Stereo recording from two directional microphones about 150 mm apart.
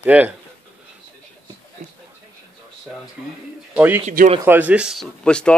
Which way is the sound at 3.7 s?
10° right (ahead or behind).